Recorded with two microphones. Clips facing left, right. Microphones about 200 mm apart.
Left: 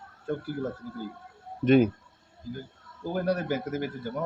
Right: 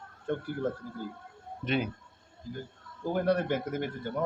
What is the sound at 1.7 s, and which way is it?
Speech, 45° left (ahead or behind).